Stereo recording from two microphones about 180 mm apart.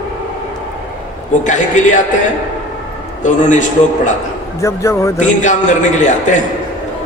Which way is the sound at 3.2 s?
40° left (ahead or behind).